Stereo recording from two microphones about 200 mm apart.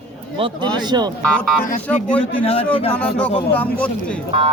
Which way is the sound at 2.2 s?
30° left (ahead or behind).